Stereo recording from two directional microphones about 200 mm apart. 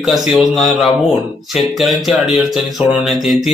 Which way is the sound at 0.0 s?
Centre (ahead or behind).